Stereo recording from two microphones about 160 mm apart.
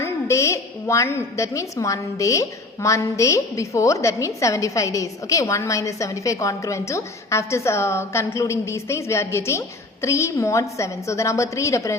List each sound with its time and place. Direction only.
0.0 s a woman's voice: 20° left (ahead or behind)